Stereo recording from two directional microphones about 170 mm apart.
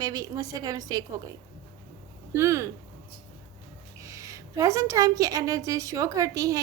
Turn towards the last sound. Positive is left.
turn(degrees=-20)  # may be behind; listen again after turning